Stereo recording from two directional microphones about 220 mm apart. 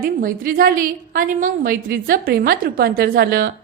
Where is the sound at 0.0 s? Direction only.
40° right (ahead or behind).